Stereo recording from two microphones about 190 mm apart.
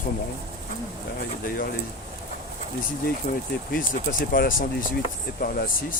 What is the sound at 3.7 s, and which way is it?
Speech, 50° left (ahead or behind).